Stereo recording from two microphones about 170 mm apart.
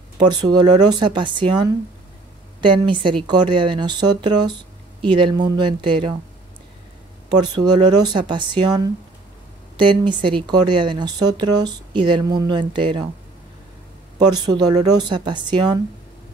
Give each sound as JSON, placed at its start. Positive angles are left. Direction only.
{"t": 0.2, "sound": "speech", "side_deg": -25}
{"t": 7.2, "sound": "speech", "side_deg": -25}
{"t": 14.1, "sound": "speech", "side_deg": -25}